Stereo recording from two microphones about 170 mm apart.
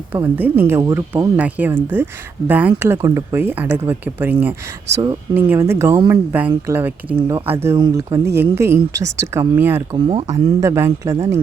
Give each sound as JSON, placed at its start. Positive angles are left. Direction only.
{"t": 0.1, "sound": "speech", "side_deg": -10}
{"t": 7.8, "sound": "speech", "side_deg": -25}
{"t": 8.2, "sound": "speech", "side_deg": -15}
{"t": 9.9, "sound": "speech", "side_deg": -30}
{"t": 10.6, "sound": "speech", "side_deg": -15}